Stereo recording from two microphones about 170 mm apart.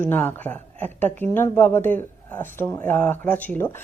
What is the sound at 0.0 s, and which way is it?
A woman's voice, 10° left (ahead or behind).